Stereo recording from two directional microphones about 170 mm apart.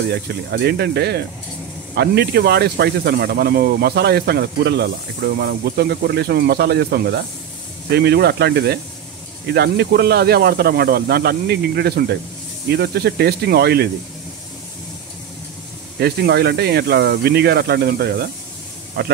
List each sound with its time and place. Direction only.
0.1 s speech: 75° right (ahead or behind)
16.0 s speech: 70° right (ahead or behind)